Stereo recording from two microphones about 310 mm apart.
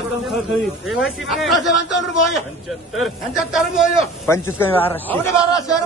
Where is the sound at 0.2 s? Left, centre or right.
Centre.